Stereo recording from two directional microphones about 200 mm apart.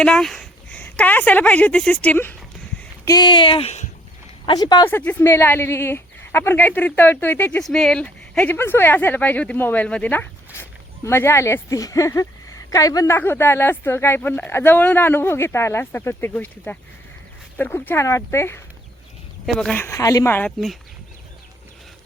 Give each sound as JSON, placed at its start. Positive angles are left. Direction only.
{"t": 0.0, "sound": "speech", "side_deg": 5}
{"t": 3.0, "sound": "speech", "side_deg": 20}
{"t": 4.4, "sound": "speech", "side_deg": 20}